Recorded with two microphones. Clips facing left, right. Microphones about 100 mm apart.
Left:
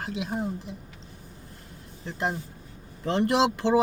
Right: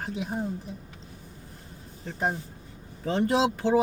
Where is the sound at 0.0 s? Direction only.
90° left.